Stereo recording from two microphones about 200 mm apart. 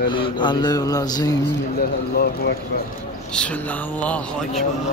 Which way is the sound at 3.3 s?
5° left (ahead or behind).